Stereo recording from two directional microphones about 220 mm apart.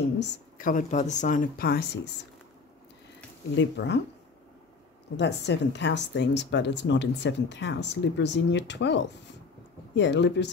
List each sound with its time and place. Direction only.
0.2 s speech: 40° left (ahead or behind)
3.5 s a woman's voice: 50° left (ahead or behind)
5.1 s a woman's voice: 50° left (ahead or behind)